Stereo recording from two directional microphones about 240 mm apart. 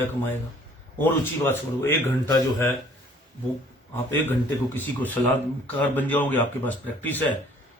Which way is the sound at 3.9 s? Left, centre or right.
Centre.